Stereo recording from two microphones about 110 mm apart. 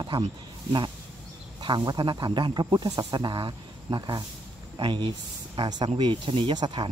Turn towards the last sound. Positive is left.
turn(degrees=-40)  # may be behind; listen again after turning